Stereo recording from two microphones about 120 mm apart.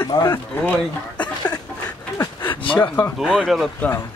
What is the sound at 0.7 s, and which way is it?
Speech, 10° left (ahead or behind).